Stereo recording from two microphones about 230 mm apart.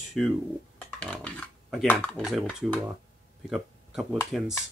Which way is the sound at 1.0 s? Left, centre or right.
Centre.